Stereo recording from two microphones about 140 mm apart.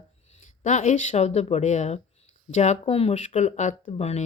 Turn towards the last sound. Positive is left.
turn(degrees=50)  # may be behind; listen again after turning